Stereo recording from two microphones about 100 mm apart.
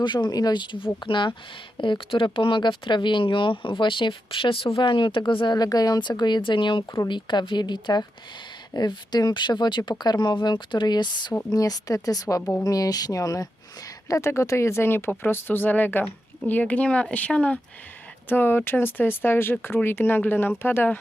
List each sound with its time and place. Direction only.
0.0 s speech: 45° left (ahead or behind)
5.5 s speech: 40° left (ahead or behind)
11.5 s speech: 35° left (ahead or behind); by 21.0 s 20° left (ahead or behind)